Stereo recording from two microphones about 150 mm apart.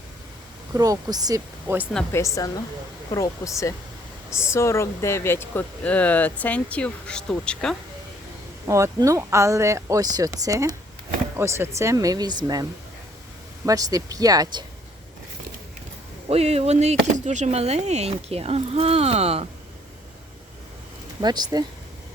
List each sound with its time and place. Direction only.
0.7 s speech: 25° right (ahead or behind)
2.1 s speech: 20° left (ahead or behind); by 7.8 s 5° left (ahead or behind)
8.6 s speech: 20° right (ahead or behind)
13.7 s speech: 25° right (ahead or behind)
16.3 s speech: 45° right (ahead or behind)
21.2 s speech: 25° right (ahead or behind)